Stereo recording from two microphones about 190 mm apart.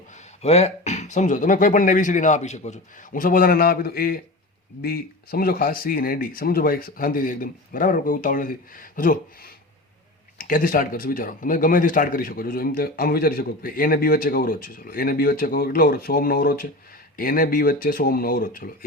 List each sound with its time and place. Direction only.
0.4 s a man's voice: 35° left (ahead or behind); by 18.9 s 50° left (ahead or behind)